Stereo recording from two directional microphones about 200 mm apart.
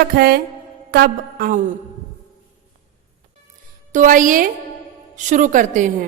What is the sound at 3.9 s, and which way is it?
A woman's voice, 40° right (ahead or behind).